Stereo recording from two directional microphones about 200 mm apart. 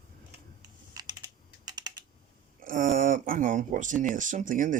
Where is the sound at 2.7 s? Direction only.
45° right (ahead or behind).